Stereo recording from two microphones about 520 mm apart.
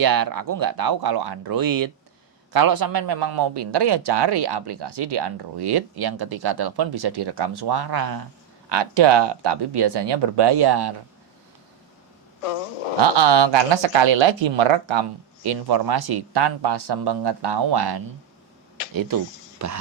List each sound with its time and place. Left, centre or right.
0.0 s a man's voice: right
8.7 s a man's voice: right
12.4 s fart: left
13.0 s speech: right
15.4 s a man's voice: right